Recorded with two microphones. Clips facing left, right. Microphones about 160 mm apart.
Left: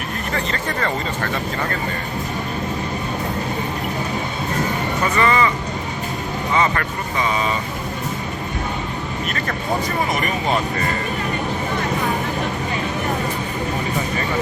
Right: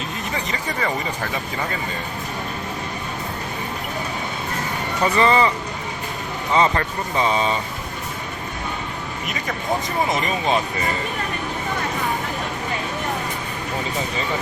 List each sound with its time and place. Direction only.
0.3 s speech: 15° right (ahead or behind)
5.1 s speech: 30° right (ahead or behind)
6.5 s speech: 30° right (ahead or behind)
9.2 s speech: 15° right (ahead or behind)